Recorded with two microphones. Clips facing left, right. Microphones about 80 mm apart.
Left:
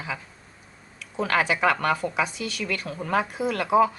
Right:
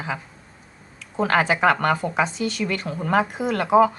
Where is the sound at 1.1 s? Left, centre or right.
Right.